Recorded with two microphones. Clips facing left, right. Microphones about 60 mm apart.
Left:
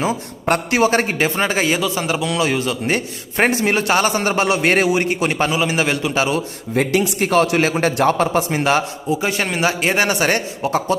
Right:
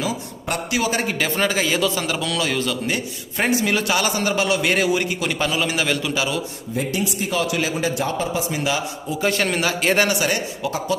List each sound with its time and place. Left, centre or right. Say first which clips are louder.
0.0 s a man's voice: left 5 dB; left
2.9 s a man's voice: left 4 dB; left
5.5 s a man's voice: left 3 dB; left
6.7 s a man's voice: left 7 dB; left
9.2 s a man's voice: right 1 dB; centre
10.2 s a man's voice: left 4 dB; left